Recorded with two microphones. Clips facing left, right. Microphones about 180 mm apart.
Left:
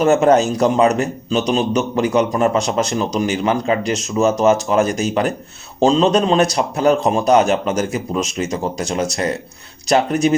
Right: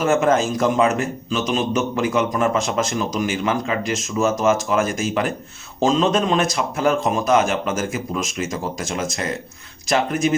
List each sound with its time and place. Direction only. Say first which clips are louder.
0.1 s a man's voice: left 3 dB; 40° left (ahead or behind)